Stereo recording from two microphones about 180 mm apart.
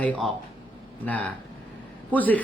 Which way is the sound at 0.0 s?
10° left (ahead or behind).